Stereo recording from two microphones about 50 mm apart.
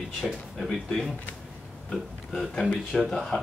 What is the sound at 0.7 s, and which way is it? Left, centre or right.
A man's voice, centre.